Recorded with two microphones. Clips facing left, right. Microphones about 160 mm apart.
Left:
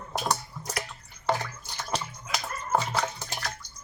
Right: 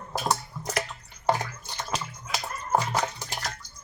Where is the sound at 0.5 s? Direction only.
50° right (ahead or behind).